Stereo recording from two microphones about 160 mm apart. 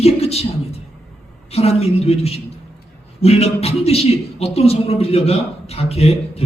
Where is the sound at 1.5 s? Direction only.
40° left (ahead or behind).